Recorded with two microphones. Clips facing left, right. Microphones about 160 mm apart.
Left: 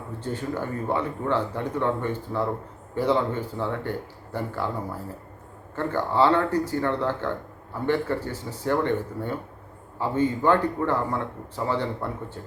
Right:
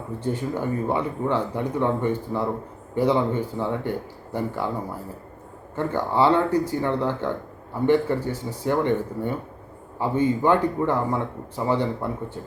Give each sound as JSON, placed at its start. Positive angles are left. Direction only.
{"t": 0.2, "sound": "speech", "side_deg": -15}
{"t": 5.7, "sound": "speech", "side_deg": -15}